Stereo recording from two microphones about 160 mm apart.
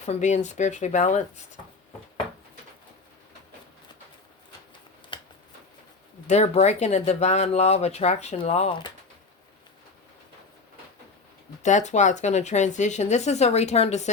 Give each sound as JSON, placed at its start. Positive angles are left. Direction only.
{"t": 0.0, "sound": "speech", "side_deg": 45}
{"t": 5.1, "sound": "shuffling cards", "side_deg": 30}
{"t": 6.2, "sound": "speech", "side_deg": 45}
{"t": 11.6, "sound": "speech", "side_deg": 50}